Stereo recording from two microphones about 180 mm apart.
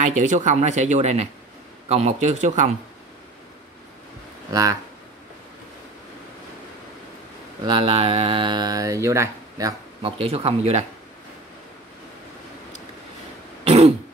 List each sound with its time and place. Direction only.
0.0 s speech: 45° right (ahead or behind)
4.5 s speech: 20° right (ahead or behind)
7.6 s speech: 25° right (ahead or behind)
10.1 s speech: 35° right (ahead or behind)
13.7 s throat clearing: 35° right (ahead or behind)